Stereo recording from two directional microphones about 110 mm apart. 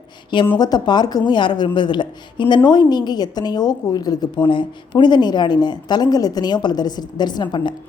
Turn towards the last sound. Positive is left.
turn(degrees=40)  # may be behind; listen again after turning